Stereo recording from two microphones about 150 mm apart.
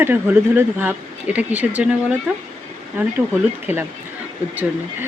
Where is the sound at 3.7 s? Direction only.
15° right (ahead or behind).